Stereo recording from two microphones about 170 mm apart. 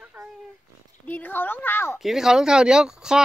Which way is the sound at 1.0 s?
10° left (ahead or behind).